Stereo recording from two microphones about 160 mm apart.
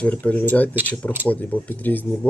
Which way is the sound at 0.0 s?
10° left (ahead or behind).